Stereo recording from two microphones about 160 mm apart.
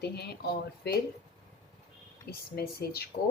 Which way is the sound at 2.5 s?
80° left.